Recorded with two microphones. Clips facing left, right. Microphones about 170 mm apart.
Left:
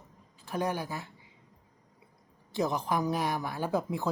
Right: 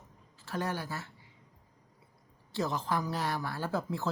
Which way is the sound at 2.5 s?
15° left (ahead or behind).